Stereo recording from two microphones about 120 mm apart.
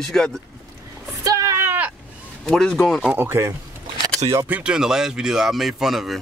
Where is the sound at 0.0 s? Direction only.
Centre (ahead or behind).